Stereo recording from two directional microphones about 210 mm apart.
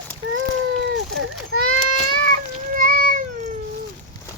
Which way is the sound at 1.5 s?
90° right.